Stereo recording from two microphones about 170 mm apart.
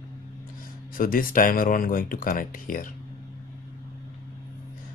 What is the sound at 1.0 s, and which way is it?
Speech, 55° left (ahead or behind).